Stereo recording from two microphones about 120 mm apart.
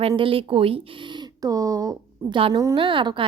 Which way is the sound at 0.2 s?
50° right (ahead or behind).